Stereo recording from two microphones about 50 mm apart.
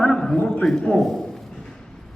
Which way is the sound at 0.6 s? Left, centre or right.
Centre.